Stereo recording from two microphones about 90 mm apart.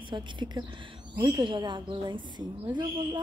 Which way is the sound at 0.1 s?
55° right (ahead or behind).